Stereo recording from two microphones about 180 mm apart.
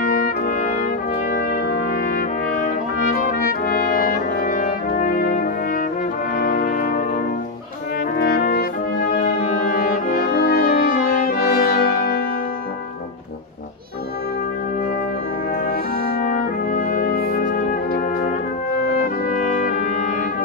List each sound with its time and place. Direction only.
0.0 s trumpet: 50° left (ahead or behind)
1.3 s brass instrument: 55° left (ahead or behind)
8.2 s brass instrument: 55° left (ahead or behind)
9.2 s brass instrument: 45° left (ahead or behind)
16.2 s brass instrument: 50° left (ahead or behind)
19.3 s music: 50° left (ahead or behind)